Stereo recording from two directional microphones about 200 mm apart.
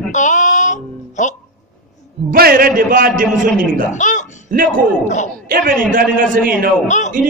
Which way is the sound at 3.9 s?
40° left (ahead or behind).